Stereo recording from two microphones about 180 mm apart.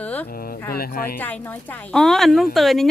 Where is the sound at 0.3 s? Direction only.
55° left (ahead or behind).